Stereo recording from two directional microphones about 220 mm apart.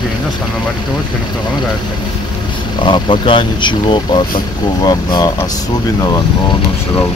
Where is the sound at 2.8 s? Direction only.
20° left (ahead or behind).